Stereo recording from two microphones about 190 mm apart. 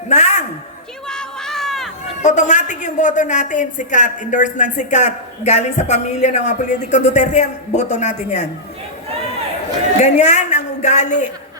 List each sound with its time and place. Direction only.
0.1 s a sound: 35° left (ahead or behind)
1.0 s crowd: 5° left (ahead or behind)
2.2 s a woman's voice: 40° left (ahead or behind)
10.0 s a woman's voice: 40° left (ahead or behind)